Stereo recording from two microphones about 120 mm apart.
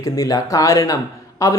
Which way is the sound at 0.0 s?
30° left (ahead or behind).